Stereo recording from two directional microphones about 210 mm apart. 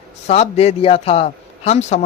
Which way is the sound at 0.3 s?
30° left (ahead or behind).